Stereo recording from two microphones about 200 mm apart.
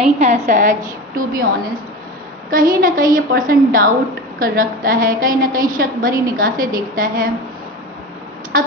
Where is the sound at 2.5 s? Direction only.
45° right (ahead or behind).